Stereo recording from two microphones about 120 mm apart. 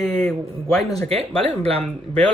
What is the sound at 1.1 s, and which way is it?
Speech, 60° right (ahead or behind).